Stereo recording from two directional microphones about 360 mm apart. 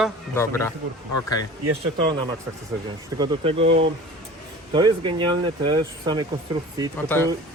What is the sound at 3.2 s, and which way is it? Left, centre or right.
Speech, centre.